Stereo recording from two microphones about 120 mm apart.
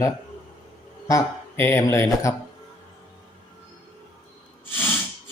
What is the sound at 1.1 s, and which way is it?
Speech, 25° left (ahead or behind).